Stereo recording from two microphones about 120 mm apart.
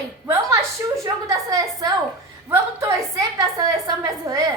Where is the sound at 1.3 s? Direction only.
30° right (ahead or behind).